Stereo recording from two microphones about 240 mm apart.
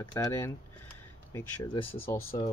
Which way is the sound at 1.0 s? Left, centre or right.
Centre.